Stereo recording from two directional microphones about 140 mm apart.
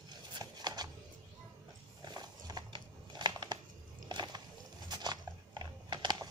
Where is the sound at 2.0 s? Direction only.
30° right (ahead or behind).